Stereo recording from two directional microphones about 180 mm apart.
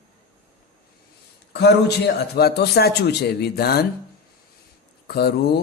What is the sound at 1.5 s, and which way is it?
A man's voice, 70° left (ahead or behind).